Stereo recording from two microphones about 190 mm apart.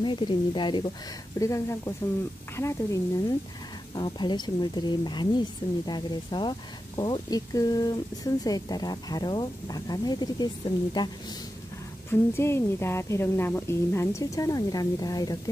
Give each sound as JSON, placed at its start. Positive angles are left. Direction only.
{"t": 0.0, "sound": "a woman's voice", "side_deg": 25}
{"t": 12.1, "sound": "a woman's voice", "side_deg": 15}